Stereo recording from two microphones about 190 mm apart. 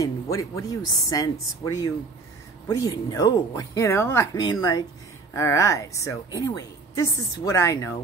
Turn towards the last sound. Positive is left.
turn(degrees=15)  # may be behind; listen again after turning